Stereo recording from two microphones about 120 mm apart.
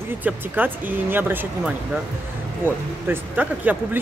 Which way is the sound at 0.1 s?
15° right (ahead or behind).